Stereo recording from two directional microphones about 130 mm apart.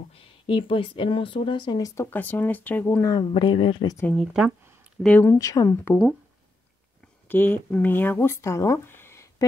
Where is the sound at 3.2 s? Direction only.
40° left (ahead or behind).